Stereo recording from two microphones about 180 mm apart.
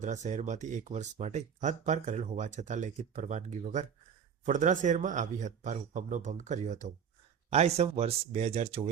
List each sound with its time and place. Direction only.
0.0 s speech: 40° right (ahead or behind)